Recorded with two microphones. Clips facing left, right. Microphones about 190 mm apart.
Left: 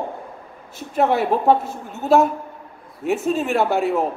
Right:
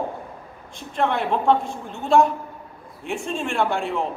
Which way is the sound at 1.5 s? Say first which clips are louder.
Left 2 dB; 5° left (ahead or behind).